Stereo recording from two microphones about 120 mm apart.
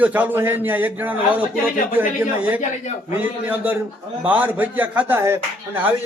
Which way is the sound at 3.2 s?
15° right (ahead or behind).